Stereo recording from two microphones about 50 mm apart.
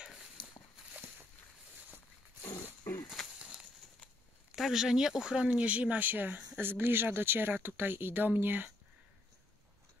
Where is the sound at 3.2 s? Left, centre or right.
Centre.